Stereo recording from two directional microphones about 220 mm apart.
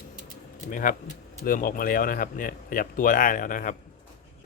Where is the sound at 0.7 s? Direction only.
40° left (ahead or behind).